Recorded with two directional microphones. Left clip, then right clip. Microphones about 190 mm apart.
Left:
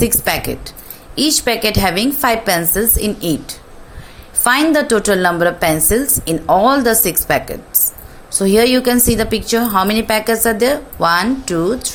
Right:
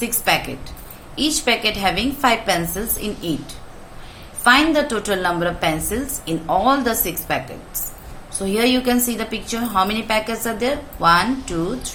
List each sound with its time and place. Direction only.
0.0 s a woman's voice: 45° left (ahead or behind)